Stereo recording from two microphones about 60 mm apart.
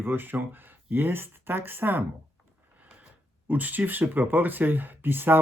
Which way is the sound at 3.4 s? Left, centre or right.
Right.